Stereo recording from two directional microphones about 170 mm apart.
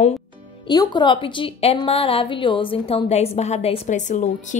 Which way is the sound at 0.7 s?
25° left (ahead or behind).